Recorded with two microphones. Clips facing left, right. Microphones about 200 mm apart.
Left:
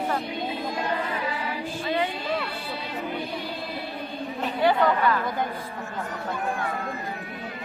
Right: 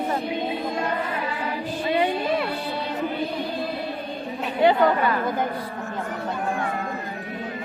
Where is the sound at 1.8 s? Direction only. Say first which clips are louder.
Right 5 dB; 20° right (ahead or behind).